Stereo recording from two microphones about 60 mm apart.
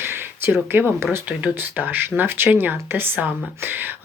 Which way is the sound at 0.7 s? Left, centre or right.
Right.